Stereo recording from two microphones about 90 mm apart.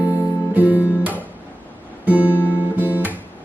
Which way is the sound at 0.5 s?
15° right (ahead or behind).